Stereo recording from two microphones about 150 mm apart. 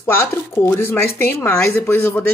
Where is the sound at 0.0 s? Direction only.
15° left (ahead or behind).